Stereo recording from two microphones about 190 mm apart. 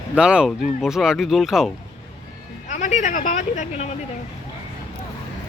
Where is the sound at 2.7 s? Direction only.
40° left (ahead or behind).